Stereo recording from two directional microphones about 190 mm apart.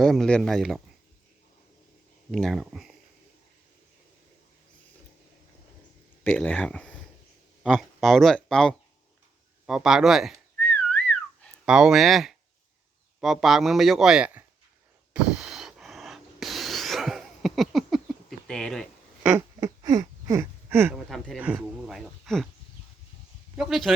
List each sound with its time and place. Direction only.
0.0 s a man's voice: centre (ahead or behind)
2.3 s a man's voice: centre (ahead or behind)
6.2 s a man's voice: 5° left (ahead or behind)
10.6 s whistling: 5° left (ahead or behind)
11.6 s a man's voice: 5° right (ahead or behind)
15.1 s a sound: 5° right (ahead or behind)
19.5 s a sound: 20° right (ahead or behind)
20.9 s speech: centre (ahead or behind)
23.6 s a man's voice: centre (ahead or behind)